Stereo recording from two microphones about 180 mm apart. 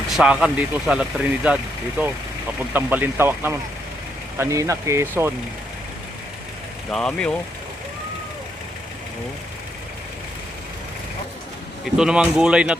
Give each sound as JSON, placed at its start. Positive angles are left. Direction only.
{"t": 0.1, "sound": "speech", "side_deg": -5}
{"t": 6.9, "sound": "speech", "side_deg": 5}
{"t": 11.9, "sound": "speech", "side_deg": -5}